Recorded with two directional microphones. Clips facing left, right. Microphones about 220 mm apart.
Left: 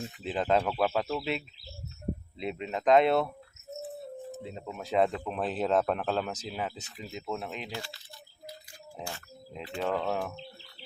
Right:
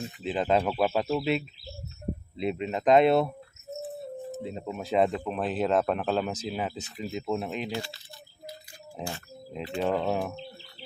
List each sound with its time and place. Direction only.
0.2 s speech: centre (ahead or behind)
4.6 s speech: 15° right (ahead or behind)
9.0 s speech: 20° right (ahead or behind)